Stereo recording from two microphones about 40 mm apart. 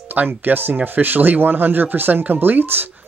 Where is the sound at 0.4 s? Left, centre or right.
Right.